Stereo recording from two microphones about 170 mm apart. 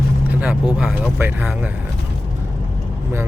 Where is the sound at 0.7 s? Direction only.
10° right (ahead or behind).